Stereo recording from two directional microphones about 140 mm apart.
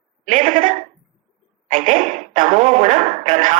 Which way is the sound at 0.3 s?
65° right (ahead or behind).